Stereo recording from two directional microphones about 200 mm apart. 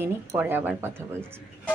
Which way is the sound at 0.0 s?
10° right (ahead or behind).